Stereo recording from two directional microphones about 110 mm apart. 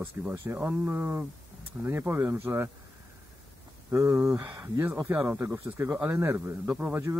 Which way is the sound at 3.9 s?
25° right (ahead or behind).